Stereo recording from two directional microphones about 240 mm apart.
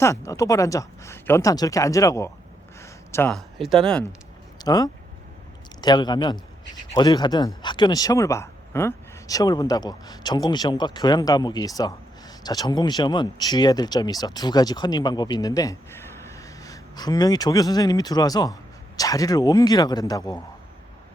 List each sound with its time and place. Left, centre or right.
0.0 s speech: centre
2.8 s a sound: centre
3.6 s speech: centre
4.6 s speech: centre